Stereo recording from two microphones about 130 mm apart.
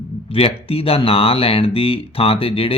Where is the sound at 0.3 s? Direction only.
45° left (ahead or behind).